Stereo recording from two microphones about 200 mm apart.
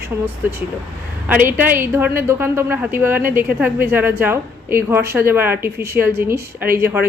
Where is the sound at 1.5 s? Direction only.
10° right (ahead or behind).